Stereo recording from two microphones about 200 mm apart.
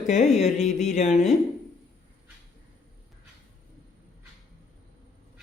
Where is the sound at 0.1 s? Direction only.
35° left (ahead or behind).